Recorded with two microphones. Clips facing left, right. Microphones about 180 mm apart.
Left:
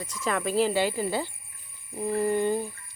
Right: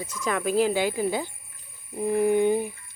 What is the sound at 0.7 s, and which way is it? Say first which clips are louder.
Bird: right 1 dB; 10° right (ahead or behind).